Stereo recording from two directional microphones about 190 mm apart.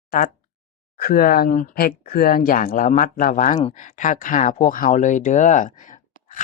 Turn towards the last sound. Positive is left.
turn(degrees=45)  # may be behind; listen again after turning